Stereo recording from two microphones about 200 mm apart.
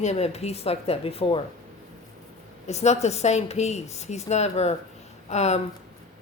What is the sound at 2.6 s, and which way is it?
A woman's voice, 35° left (ahead or behind).